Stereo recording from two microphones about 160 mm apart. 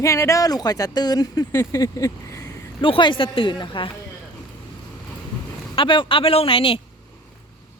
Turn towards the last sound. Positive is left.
turn(degrees=35)  # may be behind; listen again after turning